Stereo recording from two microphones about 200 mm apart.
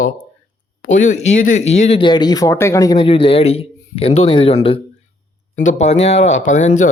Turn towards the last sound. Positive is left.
turn(degrees=35)  # may be behind; listen again after turning